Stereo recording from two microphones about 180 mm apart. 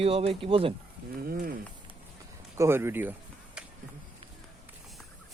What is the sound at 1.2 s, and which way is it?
Speech, 55° right (ahead or behind).